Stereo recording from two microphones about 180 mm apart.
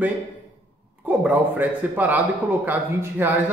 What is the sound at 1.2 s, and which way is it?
A man's voice, 10° right (ahead or behind).